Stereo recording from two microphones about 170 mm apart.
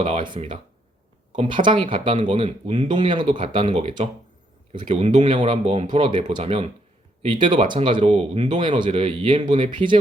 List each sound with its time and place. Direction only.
0.0 s speech: 30° right (ahead or behind)
1.6 s speech: 30° right (ahead or behind)